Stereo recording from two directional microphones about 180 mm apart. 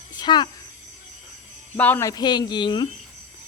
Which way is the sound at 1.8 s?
15° left (ahead or behind).